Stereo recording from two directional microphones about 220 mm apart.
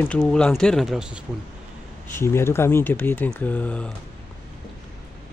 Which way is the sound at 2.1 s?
10° left (ahead or behind).